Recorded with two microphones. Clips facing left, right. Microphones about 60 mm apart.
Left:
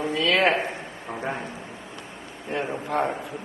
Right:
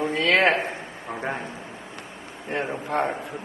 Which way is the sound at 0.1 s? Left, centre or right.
Right.